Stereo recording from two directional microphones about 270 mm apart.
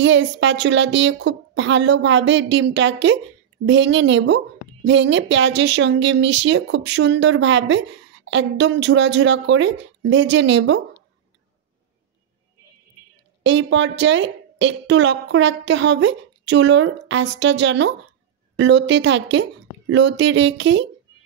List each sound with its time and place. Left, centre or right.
0.0 s a woman's voice: right
13.4 s a woman's voice: right